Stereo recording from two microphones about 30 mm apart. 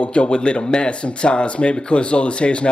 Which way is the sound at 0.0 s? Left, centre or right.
Left.